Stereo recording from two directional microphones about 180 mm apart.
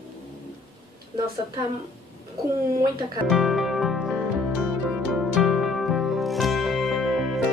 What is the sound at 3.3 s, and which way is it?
Music, centre (ahead or behind).